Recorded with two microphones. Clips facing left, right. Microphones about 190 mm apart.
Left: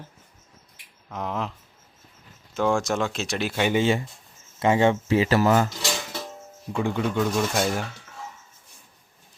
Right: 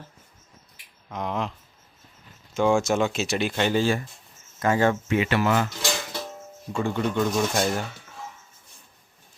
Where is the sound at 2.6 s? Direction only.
Centre (ahead or behind).